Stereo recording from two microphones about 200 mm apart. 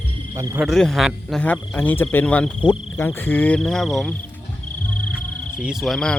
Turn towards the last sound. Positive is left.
turn(degrees=5)  # may be behind; listen again after turning